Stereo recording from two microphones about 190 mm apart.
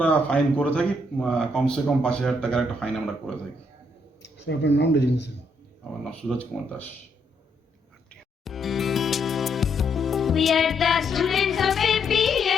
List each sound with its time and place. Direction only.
0.0 s speech: 5° left (ahead or behind)
4.2 s speech: 65° left (ahead or behind)
6.1 s speech: 5° left (ahead or behind)
8.1 s music: centre (ahead or behind)